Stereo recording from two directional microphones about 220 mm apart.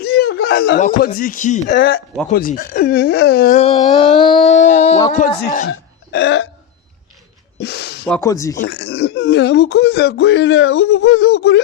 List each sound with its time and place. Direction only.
0.0 s speech: 45° left (ahead or behind)
3.6 s a sound: 25° left (ahead or behind)
5.4 s speech: 40° left (ahead or behind)
7.6 s a sound: 45° left (ahead or behind)
8.0 s speech: 10° left (ahead or behind)
8.6 s speech: 50° left (ahead or behind)